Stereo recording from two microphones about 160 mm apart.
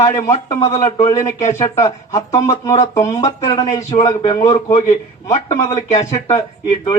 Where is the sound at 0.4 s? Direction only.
20° left (ahead or behind).